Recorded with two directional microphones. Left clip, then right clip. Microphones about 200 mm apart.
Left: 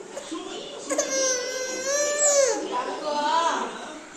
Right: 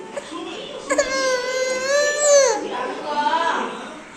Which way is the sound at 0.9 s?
25° left (ahead or behind).